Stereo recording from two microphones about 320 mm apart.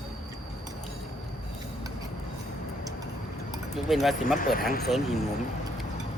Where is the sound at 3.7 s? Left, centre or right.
Centre.